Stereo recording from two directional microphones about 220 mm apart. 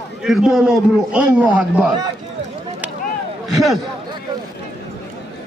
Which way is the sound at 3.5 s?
Centre (ahead or behind).